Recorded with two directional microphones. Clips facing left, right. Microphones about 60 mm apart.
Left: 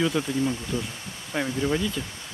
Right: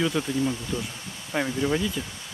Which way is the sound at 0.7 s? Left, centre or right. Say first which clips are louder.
Left 1 dB; left.